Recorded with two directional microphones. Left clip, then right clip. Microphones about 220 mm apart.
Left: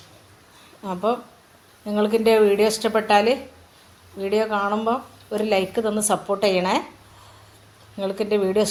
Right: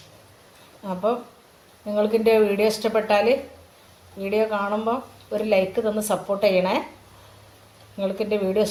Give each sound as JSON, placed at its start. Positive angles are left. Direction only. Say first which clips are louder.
{"t": 1.9, "sound": "speech", "louder": "left 1 dB", "side_deg": 35}
{"t": 7.9, "sound": "speech", "louder": "left 2 dB", "side_deg": 35}